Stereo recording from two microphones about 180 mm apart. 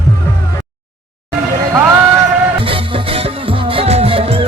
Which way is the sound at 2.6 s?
30° right (ahead or behind).